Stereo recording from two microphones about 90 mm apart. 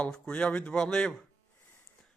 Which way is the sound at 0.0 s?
10° left (ahead or behind).